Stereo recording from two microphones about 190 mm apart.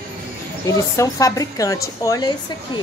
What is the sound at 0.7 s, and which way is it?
A woman's voice, 20° left (ahead or behind).